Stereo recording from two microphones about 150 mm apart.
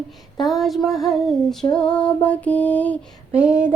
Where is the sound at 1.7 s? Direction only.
5° left (ahead or behind).